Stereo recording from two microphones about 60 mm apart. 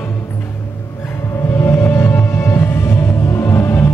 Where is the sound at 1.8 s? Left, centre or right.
Left.